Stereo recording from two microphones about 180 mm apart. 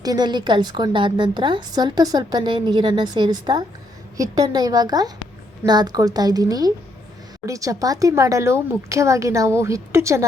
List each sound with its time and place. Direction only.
0.0 s a woman's voice: 20° right (ahead or behind)